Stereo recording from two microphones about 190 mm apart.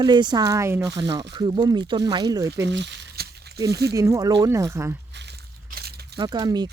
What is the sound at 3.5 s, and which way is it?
Speech, 20° right (ahead or behind).